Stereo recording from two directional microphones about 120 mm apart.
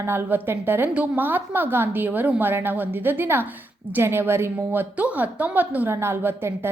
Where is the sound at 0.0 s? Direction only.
20° right (ahead or behind).